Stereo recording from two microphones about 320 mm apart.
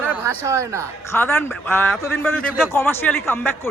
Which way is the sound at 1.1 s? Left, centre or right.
Centre.